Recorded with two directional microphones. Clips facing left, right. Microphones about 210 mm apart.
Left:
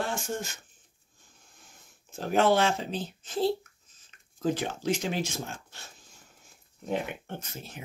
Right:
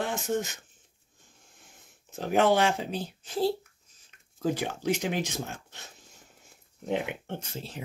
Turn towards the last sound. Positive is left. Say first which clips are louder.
# right 3 dB
turn(degrees=-30)  # may be behind; listen again after turning